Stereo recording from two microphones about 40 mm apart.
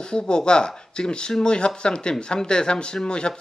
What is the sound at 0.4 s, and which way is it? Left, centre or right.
Speech, centre.